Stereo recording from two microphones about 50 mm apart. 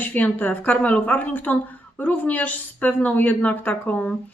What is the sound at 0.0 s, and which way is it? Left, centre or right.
A woman's voice, left.